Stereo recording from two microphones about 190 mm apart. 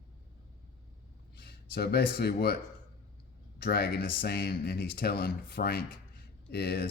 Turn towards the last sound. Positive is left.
turn(degrees=60)  # may be behind; listen again after turning